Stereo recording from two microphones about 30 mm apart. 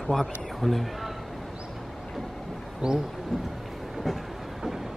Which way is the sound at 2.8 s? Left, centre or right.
Centre.